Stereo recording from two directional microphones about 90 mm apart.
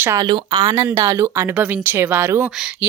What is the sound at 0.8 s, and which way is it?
Speech, 35° right (ahead or behind).